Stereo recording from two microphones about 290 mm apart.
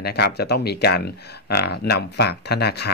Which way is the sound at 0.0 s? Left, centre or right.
Left.